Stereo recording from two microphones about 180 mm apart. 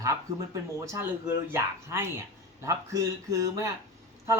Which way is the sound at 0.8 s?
15° right (ahead or behind).